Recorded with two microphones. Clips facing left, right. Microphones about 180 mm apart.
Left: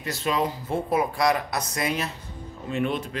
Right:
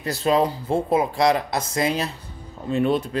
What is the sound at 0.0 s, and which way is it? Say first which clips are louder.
Speech: right 6 dB; 35° right (ahead or behind).